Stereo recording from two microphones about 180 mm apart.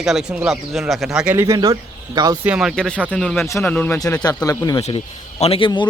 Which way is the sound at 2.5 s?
Centre (ahead or behind).